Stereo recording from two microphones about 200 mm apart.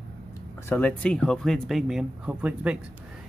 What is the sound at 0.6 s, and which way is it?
Speech, 10° left (ahead or behind).